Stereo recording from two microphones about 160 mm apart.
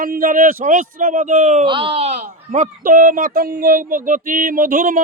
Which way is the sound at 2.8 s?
60° right (ahead or behind).